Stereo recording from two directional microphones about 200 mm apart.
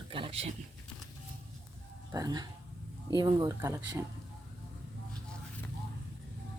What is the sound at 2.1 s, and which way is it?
Speech, 20° right (ahead or behind).